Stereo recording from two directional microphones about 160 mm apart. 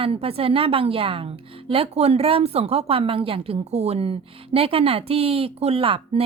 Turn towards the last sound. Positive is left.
turn(degrees=-35)  # may be behind; listen again after turning